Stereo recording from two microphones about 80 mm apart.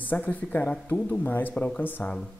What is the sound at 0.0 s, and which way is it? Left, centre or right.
A man's voice, left.